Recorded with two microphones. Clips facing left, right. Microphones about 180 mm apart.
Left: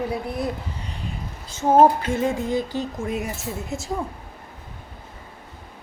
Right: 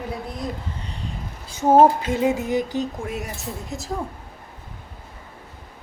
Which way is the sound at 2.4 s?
15° right (ahead or behind).